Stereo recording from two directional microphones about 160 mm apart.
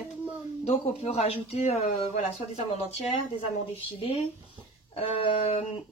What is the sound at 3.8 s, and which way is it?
Speech, 35° left (ahead or behind).